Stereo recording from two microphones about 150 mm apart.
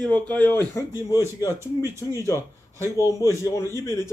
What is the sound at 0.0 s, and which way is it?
Speech, 10° left (ahead or behind).